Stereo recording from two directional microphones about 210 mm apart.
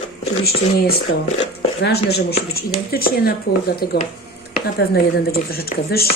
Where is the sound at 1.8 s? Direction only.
50° left (ahead or behind).